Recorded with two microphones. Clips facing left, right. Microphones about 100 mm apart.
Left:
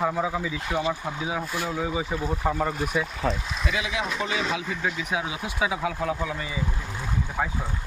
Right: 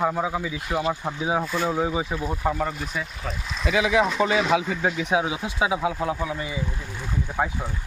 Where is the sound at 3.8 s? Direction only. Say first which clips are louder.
Right 10 dB; 30° right (ahead or behind).